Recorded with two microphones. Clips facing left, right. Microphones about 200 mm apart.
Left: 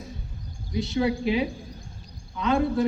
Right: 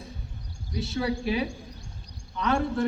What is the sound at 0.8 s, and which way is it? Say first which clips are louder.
Speech: left 4 dB; 20° left (ahead or behind).